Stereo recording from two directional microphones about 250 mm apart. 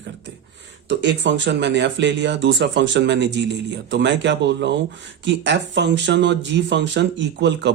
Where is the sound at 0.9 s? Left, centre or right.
Right.